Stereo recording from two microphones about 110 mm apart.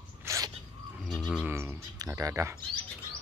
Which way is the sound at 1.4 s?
20° right (ahead or behind).